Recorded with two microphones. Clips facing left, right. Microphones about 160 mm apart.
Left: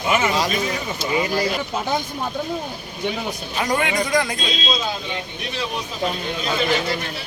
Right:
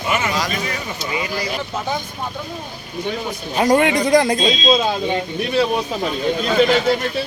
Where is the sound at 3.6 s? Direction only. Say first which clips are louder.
Right 7 dB; 35° right (ahead or behind).